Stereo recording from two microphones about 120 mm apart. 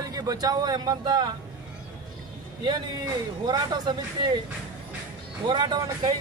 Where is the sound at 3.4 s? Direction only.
35° right (ahead or behind).